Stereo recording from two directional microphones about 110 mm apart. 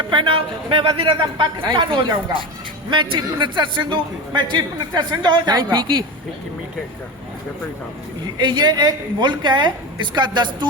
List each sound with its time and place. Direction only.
0.1 s a woman's voice: 55° right (ahead or behind)
8.4 s a woman's voice: 45° right (ahead or behind)